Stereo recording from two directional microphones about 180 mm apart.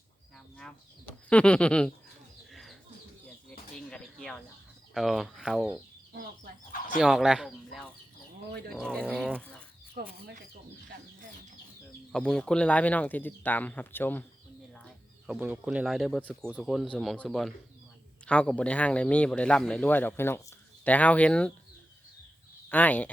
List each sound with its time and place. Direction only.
0.3 s speech: 5° left (ahead or behind)
2.5 s bird: centre (ahead or behind)
3.8 s bird: 5° left (ahead or behind)
4.9 s speech: centre (ahead or behind)
7.0 s speech: centre (ahead or behind)
9.9 s speech: 55° right (ahead or behind)
12.1 s speech: 5° left (ahead or behind)
15.3 s speech: 5° right (ahead or behind)
22.7 s speech: 10° left (ahead or behind)